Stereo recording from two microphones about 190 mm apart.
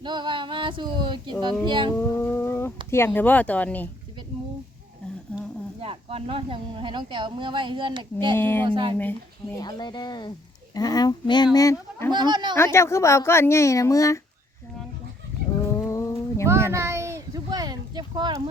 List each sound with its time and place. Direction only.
0.0 s speech: 25° right (ahead or behind)
2.0 s a sound: 10° left (ahead or behind)
2.9 s a woman's voice: 10° left (ahead or behind)
5.8 s speech: 30° right (ahead or behind)
8.4 s a woman's voice: 10° left (ahead or behind)
8.6 s speech: 25° right (ahead or behind)
9.6 s a woman's voice: 20° left (ahead or behind)
12.1 s speech: 25° right (ahead or behind)
12.5 s a woman's voice: 15° left (ahead or behind)
15.8 s a sound: 15° left (ahead or behind)
16.7 s a sound: 15° right (ahead or behind)